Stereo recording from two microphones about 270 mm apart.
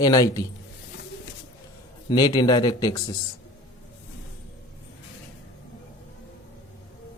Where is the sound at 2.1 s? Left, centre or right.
Centre.